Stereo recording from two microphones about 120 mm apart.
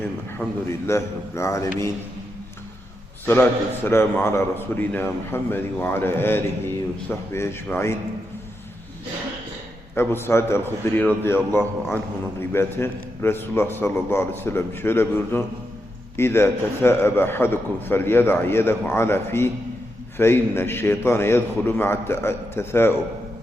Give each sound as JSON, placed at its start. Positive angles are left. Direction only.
{"t": 0.4, "sound": "a man's voice", "side_deg": 15}
{"t": 0.9, "sound": "a man's voice", "side_deg": 25}
{"t": 3.2, "sound": "a man's voice", "side_deg": 15}
{"t": 9.9, "sound": "a man's voice", "side_deg": 20}